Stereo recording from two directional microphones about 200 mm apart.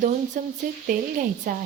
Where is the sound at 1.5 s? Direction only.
45° right (ahead or behind).